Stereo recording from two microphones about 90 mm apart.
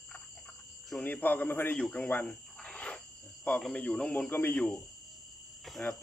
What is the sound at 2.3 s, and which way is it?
Cricket, 10° left (ahead or behind).